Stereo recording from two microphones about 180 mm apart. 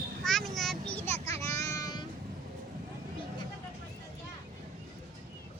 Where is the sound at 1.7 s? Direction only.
20° left (ahead or behind).